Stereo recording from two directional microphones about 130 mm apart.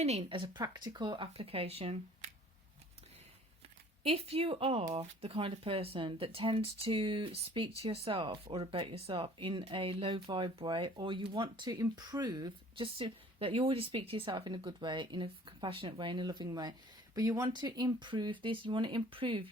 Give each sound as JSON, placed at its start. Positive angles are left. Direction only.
{"t": 0.0, "sound": "speech", "side_deg": -55}
{"t": 0.3, "sound": "speech", "side_deg": -40}
{"t": 4.0, "sound": "speech", "side_deg": -45}